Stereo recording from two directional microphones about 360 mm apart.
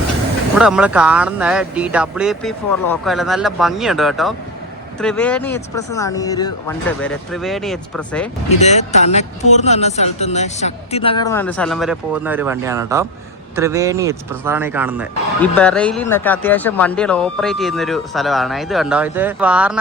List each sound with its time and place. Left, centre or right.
0.5 s speech: centre
8.5 s speech: centre